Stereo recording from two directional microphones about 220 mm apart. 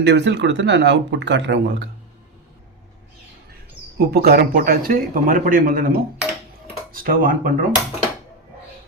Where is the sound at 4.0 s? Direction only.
45° right (ahead or behind).